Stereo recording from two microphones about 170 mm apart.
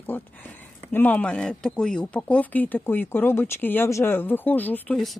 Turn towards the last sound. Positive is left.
turn(degrees=5)  # may be behind; listen again after turning